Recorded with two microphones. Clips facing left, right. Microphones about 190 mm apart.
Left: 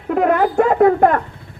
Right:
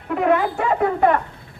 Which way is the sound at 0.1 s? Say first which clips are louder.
Left 3 dB; 45° left (ahead or behind).